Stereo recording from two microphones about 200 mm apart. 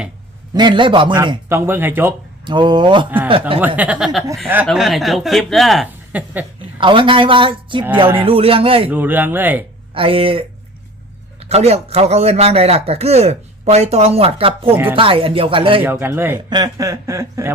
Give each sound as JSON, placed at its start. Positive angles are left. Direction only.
{"t": 0.5, "sound": "speech", "side_deg": -25}
{"t": 1.5, "sound": "speech", "side_deg": -10}
{"t": 2.4, "sound": "speech", "side_deg": -25}
{"t": 3.6, "sound": "speech", "side_deg": -10}
{"t": 6.7, "sound": "speech", "side_deg": -25}
{"t": 8.9, "sound": "speech", "side_deg": -10}
{"t": 9.9, "sound": "a man's voice", "side_deg": -25}
{"t": 15.8, "sound": "speech", "side_deg": -10}